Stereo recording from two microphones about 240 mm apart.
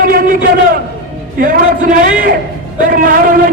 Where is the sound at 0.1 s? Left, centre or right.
Right.